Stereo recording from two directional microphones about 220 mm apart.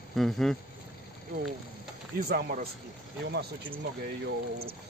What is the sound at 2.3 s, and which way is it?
Speech, 40° right (ahead or behind).